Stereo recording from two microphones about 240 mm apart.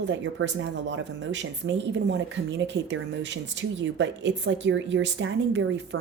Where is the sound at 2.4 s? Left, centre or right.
Right.